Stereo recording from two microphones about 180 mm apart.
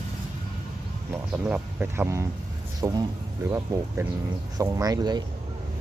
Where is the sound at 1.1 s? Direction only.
10° right (ahead or behind).